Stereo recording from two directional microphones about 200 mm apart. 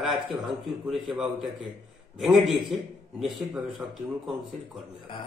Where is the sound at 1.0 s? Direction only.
Centre (ahead or behind).